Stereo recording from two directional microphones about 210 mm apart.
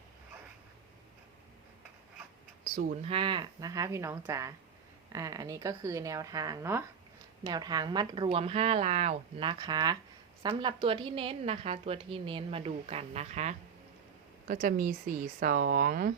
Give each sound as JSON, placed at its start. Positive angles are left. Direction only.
{"t": 2.7, "sound": "a woman's voice", "side_deg": -30}